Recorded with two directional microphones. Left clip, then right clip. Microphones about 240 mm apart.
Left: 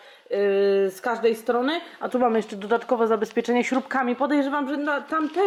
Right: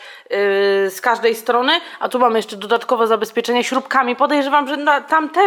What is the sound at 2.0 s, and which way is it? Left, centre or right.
Speech, right.